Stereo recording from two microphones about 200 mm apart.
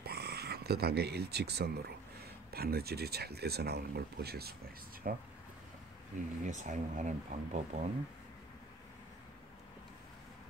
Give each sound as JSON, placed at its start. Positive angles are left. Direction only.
{"t": 0.0, "sound": "speech", "side_deg": -55}
{"t": 6.4, "sound": "speech", "side_deg": -40}